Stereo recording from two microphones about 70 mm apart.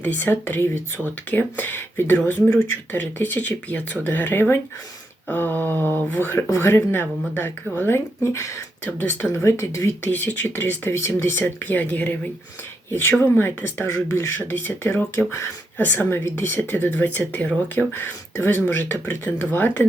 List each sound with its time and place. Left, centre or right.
0.0 s speech: left
6.3 s speech: left
10.1 s speech: left
11.3 s speech: left
14.8 s speech: left
15.8 s speech: left